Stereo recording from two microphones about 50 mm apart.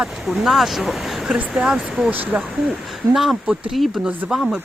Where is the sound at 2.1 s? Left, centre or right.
Right.